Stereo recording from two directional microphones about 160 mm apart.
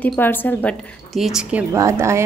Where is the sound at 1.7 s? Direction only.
20° right (ahead or behind).